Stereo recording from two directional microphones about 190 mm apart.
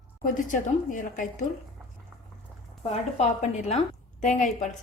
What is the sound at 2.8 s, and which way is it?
A woman's voice, 35° left (ahead or behind).